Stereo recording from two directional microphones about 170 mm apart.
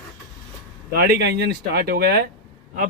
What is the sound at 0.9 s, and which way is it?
Speech, 70° right (ahead or behind).